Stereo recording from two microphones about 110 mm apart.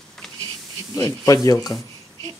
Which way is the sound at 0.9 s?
30° left (ahead or behind).